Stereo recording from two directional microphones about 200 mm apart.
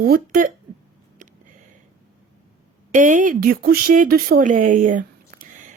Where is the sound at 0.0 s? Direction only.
50° right (ahead or behind).